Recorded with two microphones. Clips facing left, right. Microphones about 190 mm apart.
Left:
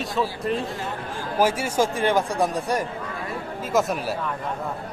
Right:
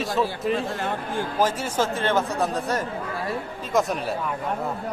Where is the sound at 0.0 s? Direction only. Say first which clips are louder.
Right 1 dB; centre (ahead or behind).